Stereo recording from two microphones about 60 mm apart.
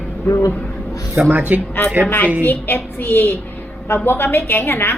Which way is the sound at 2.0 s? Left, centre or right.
Left.